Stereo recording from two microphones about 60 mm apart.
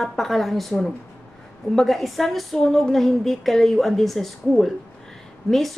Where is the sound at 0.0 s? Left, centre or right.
Centre.